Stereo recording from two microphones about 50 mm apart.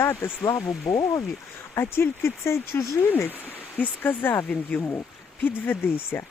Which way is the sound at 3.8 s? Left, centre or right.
Left.